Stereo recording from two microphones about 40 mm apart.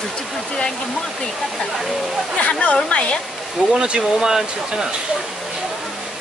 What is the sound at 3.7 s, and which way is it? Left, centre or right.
Speech, right.